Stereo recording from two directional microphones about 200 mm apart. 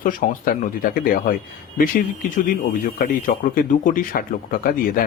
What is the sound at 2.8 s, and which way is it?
Speech, 45° left (ahead or behind).